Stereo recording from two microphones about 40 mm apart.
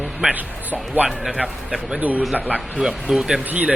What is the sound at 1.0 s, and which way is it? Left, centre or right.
Speech, right.